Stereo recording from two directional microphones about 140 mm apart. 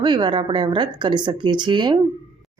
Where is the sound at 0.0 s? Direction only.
35° right (ahead or behind).